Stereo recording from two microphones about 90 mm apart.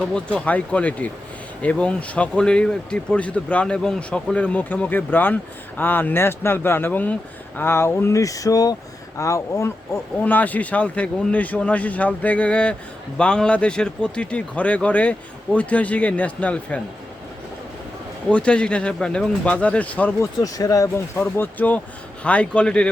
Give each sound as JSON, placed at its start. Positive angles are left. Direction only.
{"t": 0.1, "sound": "speech", "side_deg": 15}
{"t": 18.3, "sound": "speech", "side_deg": 10}
{"t": 20.4, "sound": "speech", "side_deg": 40}
{"t": 21.2, "sound": "speech", "side_deg": 20}